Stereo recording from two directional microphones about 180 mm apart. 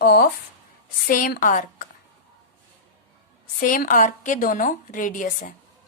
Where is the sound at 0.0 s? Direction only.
60° left (ahead or behind).